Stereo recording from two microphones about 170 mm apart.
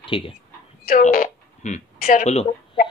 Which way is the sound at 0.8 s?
55° left (ahead or behind).